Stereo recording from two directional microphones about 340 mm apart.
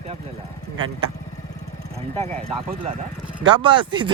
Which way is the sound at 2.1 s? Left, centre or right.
Centre.